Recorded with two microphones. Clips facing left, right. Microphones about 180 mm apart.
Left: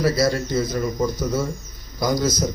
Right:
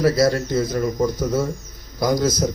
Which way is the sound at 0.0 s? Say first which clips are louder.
Right 3 dB; 55° right (ahead or behind).